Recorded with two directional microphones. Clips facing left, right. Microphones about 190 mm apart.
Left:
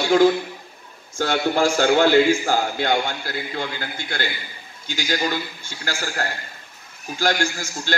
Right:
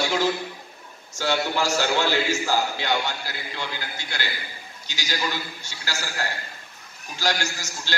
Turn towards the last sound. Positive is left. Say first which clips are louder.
# left 7 dB
turn(degrees=50)  # may be behind; listen again after turning